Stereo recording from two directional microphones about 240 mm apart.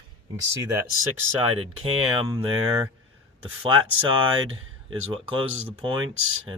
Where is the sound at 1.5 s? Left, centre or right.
Right.